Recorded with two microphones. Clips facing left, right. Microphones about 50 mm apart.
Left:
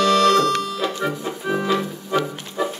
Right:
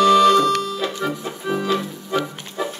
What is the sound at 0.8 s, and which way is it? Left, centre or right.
Music, centre.